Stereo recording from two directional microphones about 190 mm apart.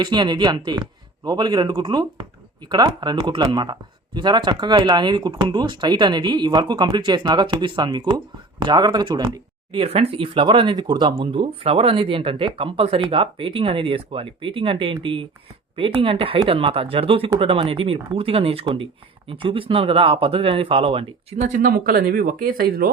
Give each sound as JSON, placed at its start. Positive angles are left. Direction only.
{"t": 0.0, "sound": "speech", "side_deg": -25}
{"t": 21.4, "sound": "speech", "side_deg": -45}